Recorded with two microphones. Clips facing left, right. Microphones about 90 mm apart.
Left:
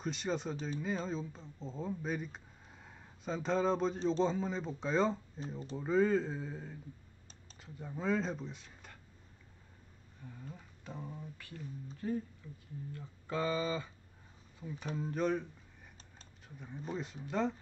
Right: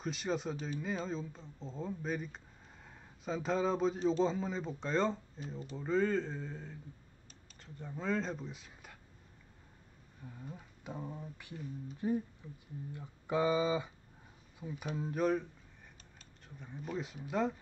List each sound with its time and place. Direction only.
0.0 s speech: centre (ahead or behind)
10.2 s speech: 10° right (ahead or behind)
16.4 s speech: centre (ahead or behind)